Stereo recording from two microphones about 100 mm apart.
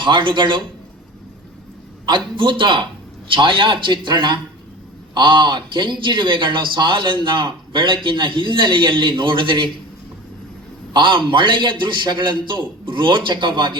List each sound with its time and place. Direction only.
0.0 s a man's voice: 55° right (ahead or behind)
2.0 s a man's voice: 50° right (ahead or behind)
10.9 s a man's voice: 55° right (ahead or behind)